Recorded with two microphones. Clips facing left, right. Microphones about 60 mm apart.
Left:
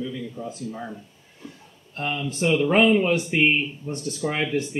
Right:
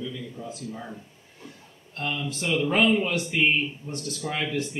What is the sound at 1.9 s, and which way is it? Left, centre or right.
Speech, centre.